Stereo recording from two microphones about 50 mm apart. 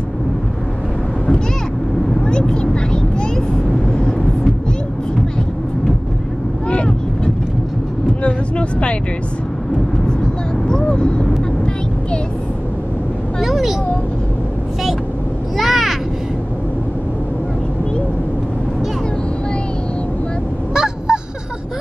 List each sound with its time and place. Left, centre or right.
2.2 s vehicle: centre
8.2 s vehicle: left
10.7 s a sound: centre
13.4 s vehicle: centre
15.5 s a sound: centre
20.7 s honk: centre